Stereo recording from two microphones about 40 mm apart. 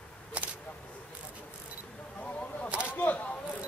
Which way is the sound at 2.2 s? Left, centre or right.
Left.